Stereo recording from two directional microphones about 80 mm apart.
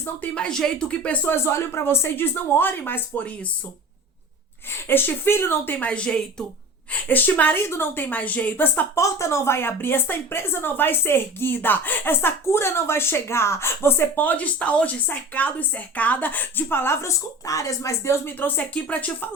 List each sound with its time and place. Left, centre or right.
0.0 s speech: centre
1.3 s speech: left
4.7 s speech: left
5.7 s speech: centre
6.9 s speech: left
9.0 s speech: left; by 19.3 s centre